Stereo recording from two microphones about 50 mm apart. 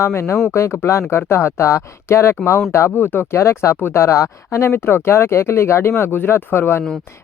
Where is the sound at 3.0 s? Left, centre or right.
Left.